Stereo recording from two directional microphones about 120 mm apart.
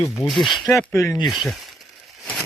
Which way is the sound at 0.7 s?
20° left (ahead or behind).